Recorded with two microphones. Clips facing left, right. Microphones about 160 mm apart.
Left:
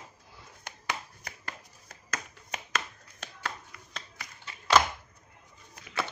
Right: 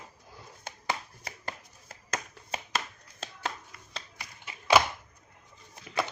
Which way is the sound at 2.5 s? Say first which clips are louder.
Right 1 dB; 30° right (ahead or behind).